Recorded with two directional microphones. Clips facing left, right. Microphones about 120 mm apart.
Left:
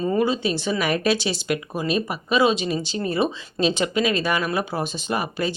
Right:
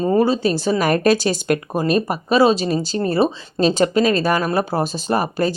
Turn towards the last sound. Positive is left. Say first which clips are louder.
# right 6 dB
turn(degrees=-40)  # may be behind; listen again after turning